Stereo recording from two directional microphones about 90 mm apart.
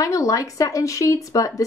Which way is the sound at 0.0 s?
40° left (ahead or behind).